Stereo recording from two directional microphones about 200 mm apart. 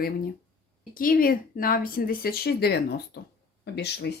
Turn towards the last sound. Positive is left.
turn(degrees=55)  # may be behind; listen again after turning